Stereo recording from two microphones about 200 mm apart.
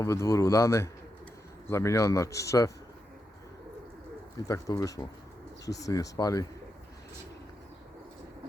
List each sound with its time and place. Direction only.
0.0 s a man's voice: 15° left (ahead or behind)
4.4 s a man's voice: 15° left (ahead or behind)